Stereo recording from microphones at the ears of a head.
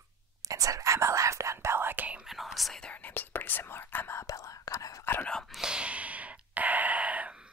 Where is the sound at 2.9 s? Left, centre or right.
Left.